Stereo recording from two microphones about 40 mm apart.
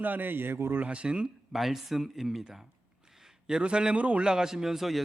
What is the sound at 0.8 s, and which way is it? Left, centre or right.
Speech, right.